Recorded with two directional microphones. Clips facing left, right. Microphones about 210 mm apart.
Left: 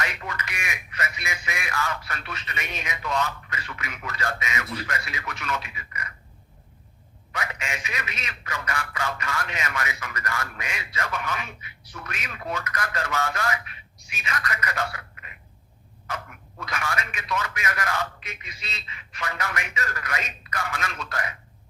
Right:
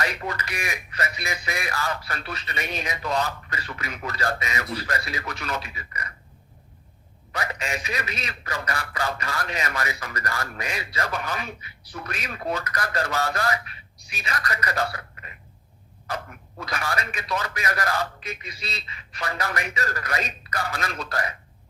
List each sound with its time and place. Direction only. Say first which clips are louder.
0.0 s a man's voice: right 4 dB; 35° right (ahead or behind)
7.3 s a man's voice: right 3 dB; 35° right (ahead or behind)